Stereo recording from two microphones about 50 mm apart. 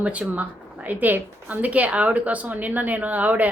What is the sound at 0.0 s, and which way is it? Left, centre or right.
Speech, right.